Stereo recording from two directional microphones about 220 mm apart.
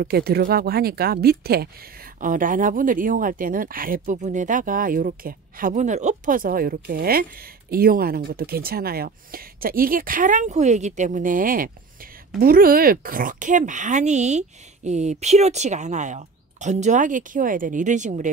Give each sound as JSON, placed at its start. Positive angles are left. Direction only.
{"t": 0.0, "sound": "speech", "side_deg": -45}